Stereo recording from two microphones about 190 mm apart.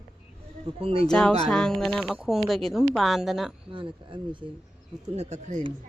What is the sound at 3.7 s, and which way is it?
Speech, 25° right (ahead or behind).